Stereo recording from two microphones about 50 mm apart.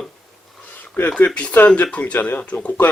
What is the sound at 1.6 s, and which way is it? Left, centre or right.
Speech, left.